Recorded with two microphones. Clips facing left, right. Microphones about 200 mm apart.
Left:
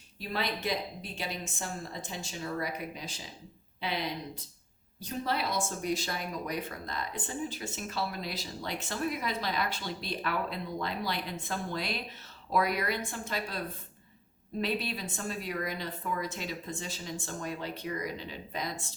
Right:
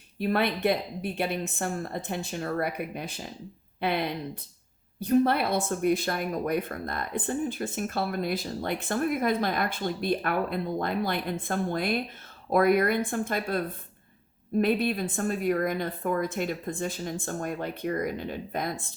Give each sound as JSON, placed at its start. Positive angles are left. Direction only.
{"t": 0.2, "sound": "a woman's voice", "side_deg": -60}